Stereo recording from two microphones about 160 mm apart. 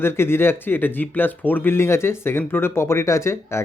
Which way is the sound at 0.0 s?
15° left (ahead or behind).